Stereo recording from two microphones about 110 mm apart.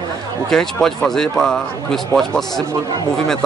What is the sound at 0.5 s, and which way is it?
Speech, 5° left (ahead or behind).